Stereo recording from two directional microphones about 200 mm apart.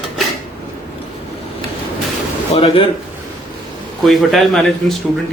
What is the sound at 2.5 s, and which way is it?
Speech, 30° left (ahead or behind).